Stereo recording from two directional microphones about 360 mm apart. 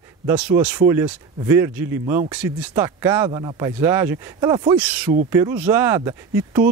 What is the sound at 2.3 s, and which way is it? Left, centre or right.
Speech, centre.